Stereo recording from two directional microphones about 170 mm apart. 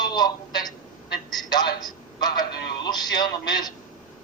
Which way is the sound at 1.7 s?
25° left (ahead or behind).